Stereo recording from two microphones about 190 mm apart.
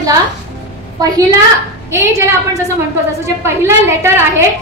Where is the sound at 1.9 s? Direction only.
15° right (ahead or behind).